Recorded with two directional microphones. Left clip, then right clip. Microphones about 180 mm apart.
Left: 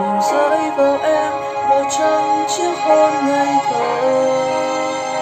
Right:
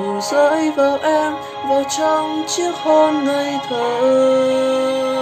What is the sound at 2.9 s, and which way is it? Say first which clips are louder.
Music: even; 40° left (ahead or behind).